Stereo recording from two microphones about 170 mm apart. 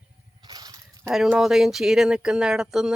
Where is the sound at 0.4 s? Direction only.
25° right (ahead or behind).